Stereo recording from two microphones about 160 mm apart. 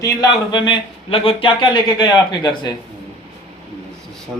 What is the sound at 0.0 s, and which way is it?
Speech, 25° left (ahead or behind).